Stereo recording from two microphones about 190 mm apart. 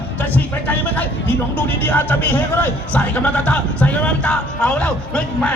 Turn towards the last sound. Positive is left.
turn(degrees=5)  # may be behind; listen again after turning